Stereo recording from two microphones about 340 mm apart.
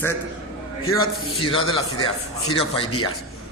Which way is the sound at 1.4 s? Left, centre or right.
Centre.